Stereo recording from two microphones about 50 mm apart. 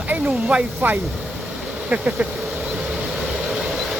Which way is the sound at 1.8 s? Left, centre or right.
Right.